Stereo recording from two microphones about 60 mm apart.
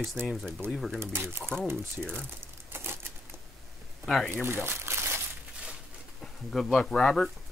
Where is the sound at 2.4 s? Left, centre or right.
Right.